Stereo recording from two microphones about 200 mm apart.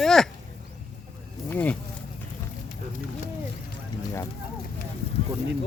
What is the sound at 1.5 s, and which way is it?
Speech, 10° left (ahead or behind).